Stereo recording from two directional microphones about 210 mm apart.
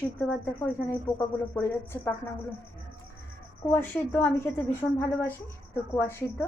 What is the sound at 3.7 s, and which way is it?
A woman's voice, 10° left (ahead or behind).